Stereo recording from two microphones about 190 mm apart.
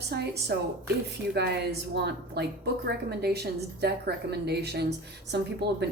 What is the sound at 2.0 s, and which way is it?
A woman's voice, 60° right (ahead or behind).